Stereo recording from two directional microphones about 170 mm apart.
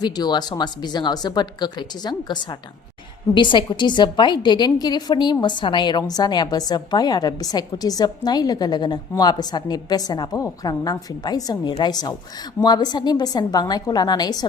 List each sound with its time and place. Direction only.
0.0 s a woman's voice: 25° left (ahead or behind)